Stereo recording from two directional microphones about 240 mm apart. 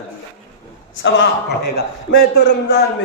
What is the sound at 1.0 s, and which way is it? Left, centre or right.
A man's voice, left.